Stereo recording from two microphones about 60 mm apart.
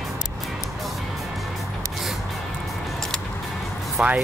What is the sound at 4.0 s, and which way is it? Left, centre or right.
Speech, centre.